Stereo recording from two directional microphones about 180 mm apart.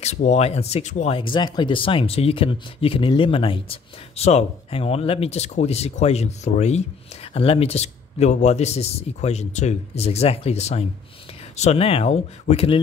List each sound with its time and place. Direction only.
0.0 s speech: 40° left (ahead or behind)